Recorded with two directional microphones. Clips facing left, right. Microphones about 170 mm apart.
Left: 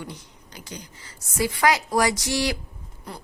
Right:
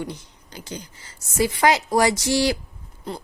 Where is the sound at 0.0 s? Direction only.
30° right (ahead or behind).